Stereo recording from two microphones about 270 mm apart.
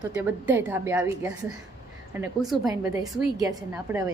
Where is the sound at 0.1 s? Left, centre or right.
Centre.